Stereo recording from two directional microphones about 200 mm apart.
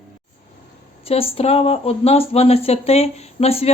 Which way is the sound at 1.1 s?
30° left (ahead or behind).